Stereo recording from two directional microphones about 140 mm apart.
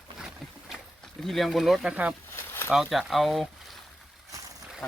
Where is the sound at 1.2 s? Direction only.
Centre (ahead or behind).